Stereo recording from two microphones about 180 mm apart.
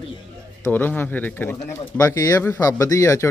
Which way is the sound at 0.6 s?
10° left (ahead or behind).